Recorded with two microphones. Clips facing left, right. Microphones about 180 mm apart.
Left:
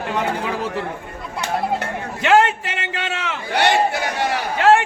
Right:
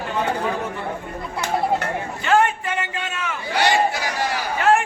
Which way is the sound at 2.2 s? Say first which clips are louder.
Left 3 dB; 85° left.